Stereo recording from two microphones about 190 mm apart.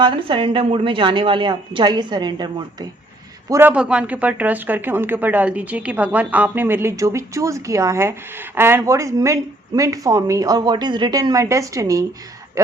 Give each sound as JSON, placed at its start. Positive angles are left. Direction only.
{"t": 0.0, "sound": "a woman's voice", "side_deg": -25}
{"t": 3.5, "sound": "speech", "side_deg": -10}